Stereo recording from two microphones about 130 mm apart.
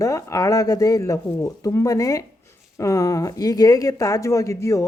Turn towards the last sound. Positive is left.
turn(degrees=20)  # may be behind; listen again after turning